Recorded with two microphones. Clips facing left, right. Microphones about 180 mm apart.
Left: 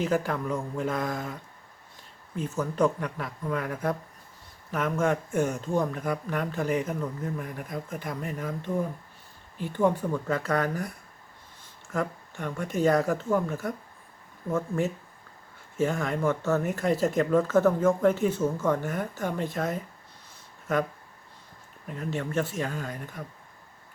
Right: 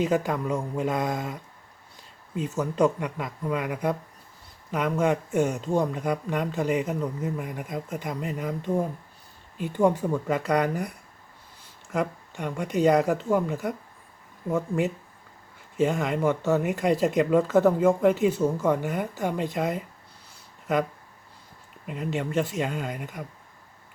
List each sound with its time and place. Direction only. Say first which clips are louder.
0.1 s speech: right 2 dB; 15° right (ahead or behind)
9.6 s speech: right 2 dB; 15° right (ahead or behind)
21.8 s speech: right 2 dB; 15° right (ahead or behind)